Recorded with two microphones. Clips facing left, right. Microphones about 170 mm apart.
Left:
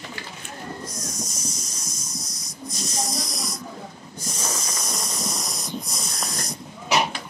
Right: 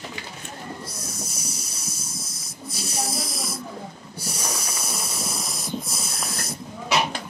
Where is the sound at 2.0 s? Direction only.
25° right (ahead or behind).